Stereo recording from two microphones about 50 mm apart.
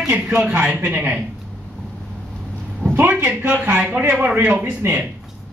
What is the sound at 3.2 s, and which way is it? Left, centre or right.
Speech, right.